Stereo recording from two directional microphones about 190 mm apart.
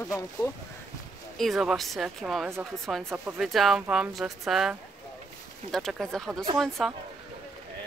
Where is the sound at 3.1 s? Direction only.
10° right (ahead or behind).